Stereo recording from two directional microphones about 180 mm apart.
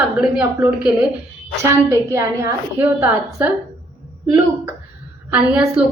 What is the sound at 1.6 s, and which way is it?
A woman's voice, 15° right (ahead or behind).